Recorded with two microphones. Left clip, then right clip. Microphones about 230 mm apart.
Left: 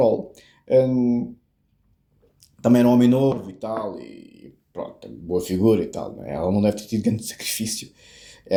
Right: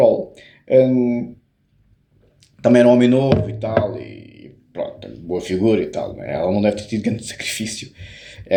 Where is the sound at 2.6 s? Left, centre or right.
Left.